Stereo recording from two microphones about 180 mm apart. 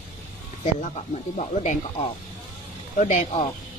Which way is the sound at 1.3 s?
45° left (ahead or behind).